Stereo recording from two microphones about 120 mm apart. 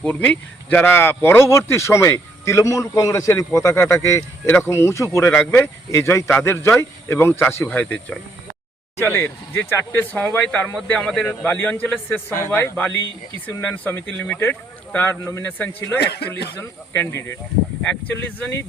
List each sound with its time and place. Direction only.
0.0 s a man's voice: 15° left (ahead or behind)